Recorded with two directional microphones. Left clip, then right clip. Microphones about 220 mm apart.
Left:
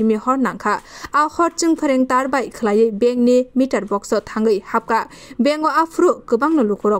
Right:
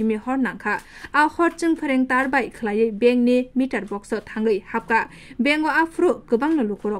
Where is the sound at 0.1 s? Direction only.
15° left (ahead or behind).